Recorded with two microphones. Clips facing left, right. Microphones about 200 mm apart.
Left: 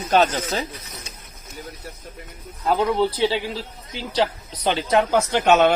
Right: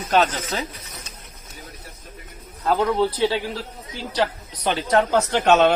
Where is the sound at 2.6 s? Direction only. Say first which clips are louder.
Even; 15° left (ahead or behind).